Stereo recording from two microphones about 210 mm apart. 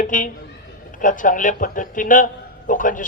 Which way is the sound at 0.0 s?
40° left (ahead or behind).